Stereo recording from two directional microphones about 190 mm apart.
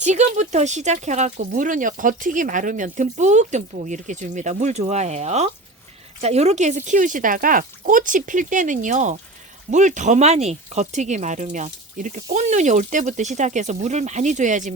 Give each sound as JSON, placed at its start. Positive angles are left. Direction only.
{"t": 0.0, "sound": "speech", "side_deg": -40}